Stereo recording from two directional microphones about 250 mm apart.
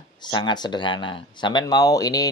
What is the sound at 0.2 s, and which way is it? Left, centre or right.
Speech, centre.